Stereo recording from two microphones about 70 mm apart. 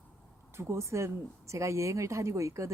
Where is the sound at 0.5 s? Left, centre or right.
Right.